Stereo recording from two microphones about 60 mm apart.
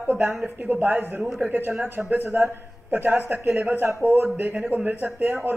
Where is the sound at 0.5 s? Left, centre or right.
Right.